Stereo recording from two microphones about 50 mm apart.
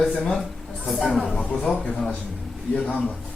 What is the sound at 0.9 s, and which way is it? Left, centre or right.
Speech, centre.